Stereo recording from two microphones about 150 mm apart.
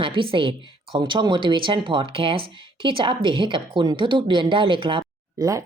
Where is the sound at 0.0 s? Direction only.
35° right (ahead or behind).